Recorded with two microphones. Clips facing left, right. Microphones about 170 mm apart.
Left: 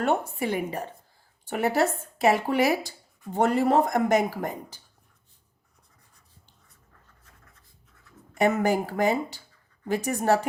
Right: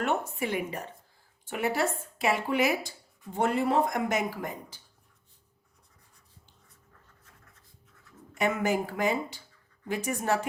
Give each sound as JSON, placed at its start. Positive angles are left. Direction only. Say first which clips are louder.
{"t": 0.0, "sound": "speech", "louder": "left 4 dB", "side_deg": 35}
{"t": 8.4, "sound": "speech", "louder": "left 5 dB", "side_deg": 40}